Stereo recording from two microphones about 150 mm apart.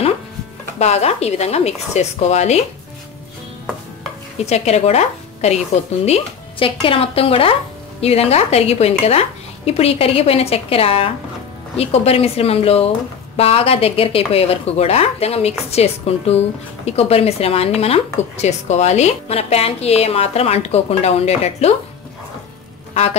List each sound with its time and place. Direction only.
0.7 s speech: 45° left (ahead or behind)
4.5 s speech: 45° left (ahead or behind)